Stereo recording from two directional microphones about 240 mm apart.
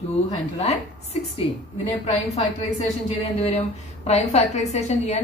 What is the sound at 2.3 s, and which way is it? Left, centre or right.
A woman's voice, left.